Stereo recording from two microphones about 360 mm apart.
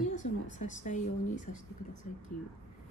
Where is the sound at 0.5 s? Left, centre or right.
Left.